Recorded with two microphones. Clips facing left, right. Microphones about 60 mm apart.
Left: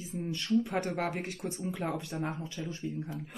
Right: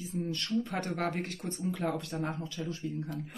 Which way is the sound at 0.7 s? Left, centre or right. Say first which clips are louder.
Left 1 dB; centre.